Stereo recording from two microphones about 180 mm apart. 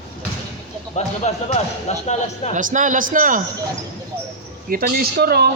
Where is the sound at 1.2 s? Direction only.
40° left (ahead or behind).